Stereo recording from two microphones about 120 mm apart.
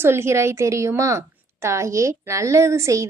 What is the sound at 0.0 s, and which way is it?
A woman's voice, 20° right (ahead or behind).